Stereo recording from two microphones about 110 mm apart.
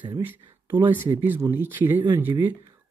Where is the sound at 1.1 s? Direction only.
20° right (ahead or behind).